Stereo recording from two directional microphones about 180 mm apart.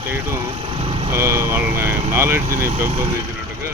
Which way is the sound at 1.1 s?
15° right (ahead or behind).